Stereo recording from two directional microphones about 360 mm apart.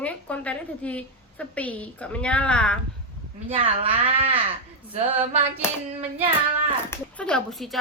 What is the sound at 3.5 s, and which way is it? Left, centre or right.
Speech, centre.